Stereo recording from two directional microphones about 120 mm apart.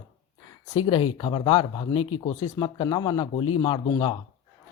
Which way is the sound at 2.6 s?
35° left (ahead or behind).